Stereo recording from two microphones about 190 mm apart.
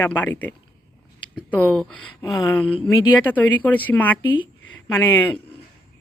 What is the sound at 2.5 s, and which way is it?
Speech, 10° left (ahead or behind).